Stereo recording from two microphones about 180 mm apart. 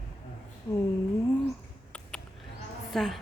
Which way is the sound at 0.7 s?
25° left (ahead or behind).